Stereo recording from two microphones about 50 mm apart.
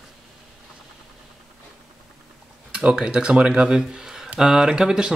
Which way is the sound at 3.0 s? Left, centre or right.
Right.